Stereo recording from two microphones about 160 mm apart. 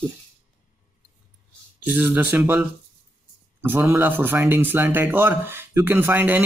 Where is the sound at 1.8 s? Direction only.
10° right (ahead or behind).